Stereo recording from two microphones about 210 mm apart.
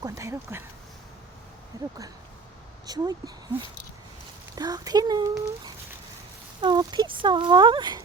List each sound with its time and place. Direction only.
0.0 s speech: 15° right (ahead or behind)
1.7 s speech: 15° right (ahead or behind)
4.5 s speech: 20° right (ahead or behind)